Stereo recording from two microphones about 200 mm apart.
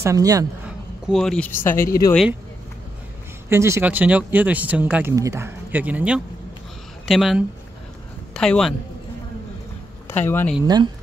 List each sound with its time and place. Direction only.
0.0 s speech: 15° right (ahead or behind)
0.7 s speech: centre (ahead or behind); by 2.1 s 15° left (ahead or behind)
3.4 s a man's voice: 15° right (ahead or behind); by 8.7 s centre (ahead or behind)
10.0 s speech: 10° left (ahead or behind)